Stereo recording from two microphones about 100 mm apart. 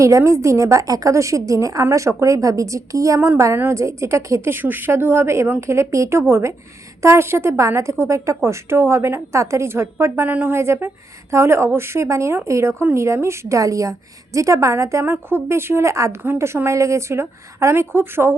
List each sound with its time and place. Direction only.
0.0 s a woman's voice: 30° right (ahead or behind)
3.2 s a woman's voice: 20° right (ahead or behind)